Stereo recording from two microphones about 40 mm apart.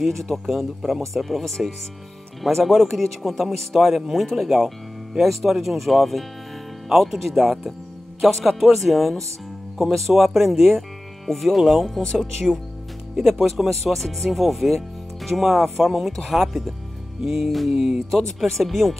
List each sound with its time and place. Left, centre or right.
0.0 s speech: centre
0.5 s speech: centre
13.6 s music: centre
13.9 s speech: centre
16.1 s speech: centre
16.3 s speech: centre
17.2 s music: centre
18.1 s speech: centre